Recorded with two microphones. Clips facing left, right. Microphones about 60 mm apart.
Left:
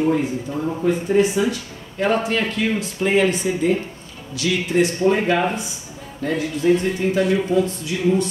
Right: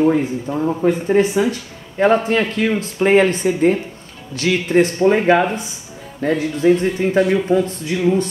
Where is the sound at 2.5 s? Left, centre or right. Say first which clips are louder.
Right 3 dB; right.